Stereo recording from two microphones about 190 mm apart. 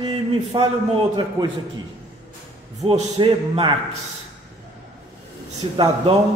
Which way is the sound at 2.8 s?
25° right (ahead or behind).